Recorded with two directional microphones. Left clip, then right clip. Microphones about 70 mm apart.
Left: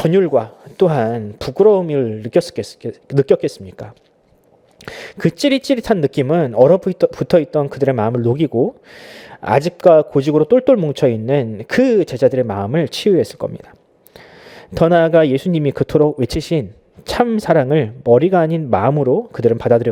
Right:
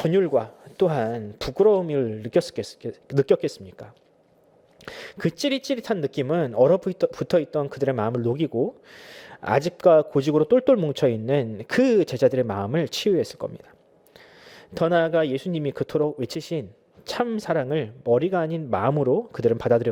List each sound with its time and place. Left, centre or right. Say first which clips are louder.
0.0 s speech: left 7 dB; left
4.9 s speech: left 8 dB; left
6.2 s speech: left 7 dB; left
8.5 s speech: left 8 dB; centre
14.7 s speech: left 9 dB; left; by 19.9 s centre